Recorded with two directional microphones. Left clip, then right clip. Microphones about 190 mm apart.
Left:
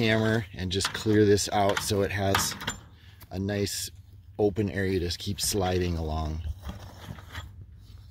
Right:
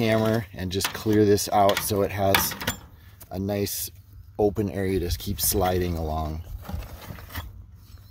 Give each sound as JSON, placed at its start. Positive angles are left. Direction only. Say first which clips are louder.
{"t": 0.0, "sound": "speech", "louder": "right 3 dB", "side_deg": -5}
{"t": 2.4, "sound": "speech", "louder": "right 3 dB", "side_deg": -30}
{"t": 3.2, "sound": "speech", "louder": "right 3 dB", "side_deg": 0}